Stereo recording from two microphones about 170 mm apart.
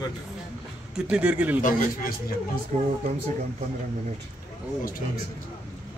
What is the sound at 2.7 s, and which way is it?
Speech, 45° right (ahead or behind).